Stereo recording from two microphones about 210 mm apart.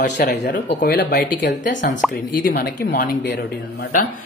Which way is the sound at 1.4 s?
35° left (ahead or behind).